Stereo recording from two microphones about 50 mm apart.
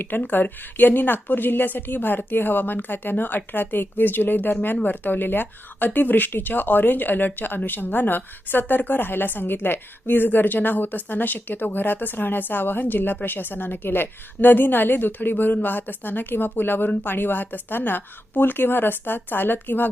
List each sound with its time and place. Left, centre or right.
0.3 s speech: left